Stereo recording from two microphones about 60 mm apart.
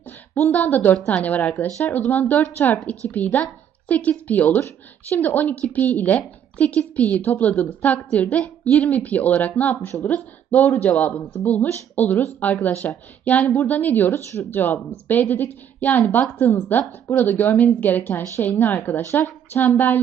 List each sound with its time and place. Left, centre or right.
0.5 s a woman's voice: left
4.6 s a woman's voice: left